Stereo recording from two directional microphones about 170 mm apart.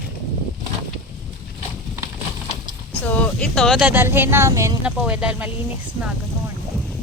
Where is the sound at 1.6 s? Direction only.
5° right (ahead or behind).